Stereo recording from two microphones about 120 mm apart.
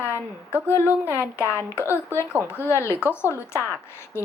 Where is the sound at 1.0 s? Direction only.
20° right (ahead or behind).